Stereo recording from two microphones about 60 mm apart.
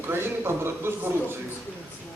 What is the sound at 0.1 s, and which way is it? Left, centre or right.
Speech, right.